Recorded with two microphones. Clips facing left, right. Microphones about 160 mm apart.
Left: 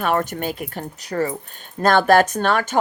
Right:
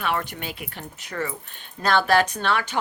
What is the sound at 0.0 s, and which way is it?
A woman's voice, 45° left (ahead or behind).